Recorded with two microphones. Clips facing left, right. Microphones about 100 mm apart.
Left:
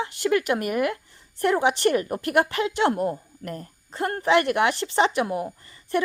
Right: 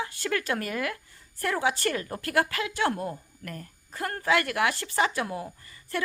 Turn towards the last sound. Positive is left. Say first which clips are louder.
# left 8 dB
turn(degrees=20)  # may be behind; listen again after turning